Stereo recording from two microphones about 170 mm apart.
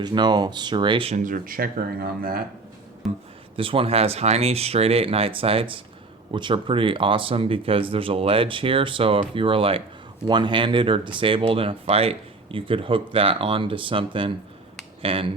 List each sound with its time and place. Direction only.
0.0 s speech: 25° right (ahead or behind)
1.2 s speech: 55° right (ahead or behind)
3.0 s a sound: centre (ahead or behind)
3.5 s speech: 30° right (ahead or behind)